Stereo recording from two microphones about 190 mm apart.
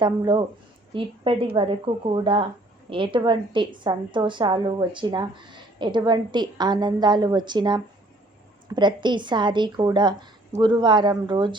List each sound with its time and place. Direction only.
0.0 s a woman's voice: 25° right (ahead or behind)